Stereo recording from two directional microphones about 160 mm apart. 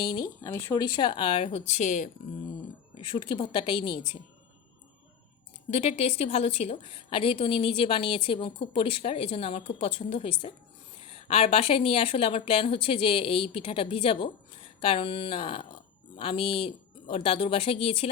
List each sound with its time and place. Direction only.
0.0 s a woman's voice: 25° left (ahead or behind); by 2.0 s 50° left (ahead or behind)
3.0 s a woman's voice: 30° left (ahead or behind)
5.7 s a woman's voice: 40° left (ahead or behind)